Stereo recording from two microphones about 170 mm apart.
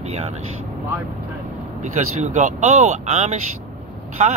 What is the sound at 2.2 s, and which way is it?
Speech, 45° right (ahead or behind).